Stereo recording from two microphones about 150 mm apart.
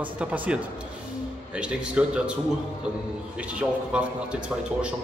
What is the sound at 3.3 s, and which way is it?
A man's voice, 10° right (ahead or behind).